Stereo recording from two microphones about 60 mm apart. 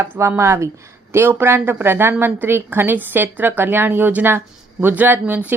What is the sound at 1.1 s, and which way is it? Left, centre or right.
A woman's voice, right.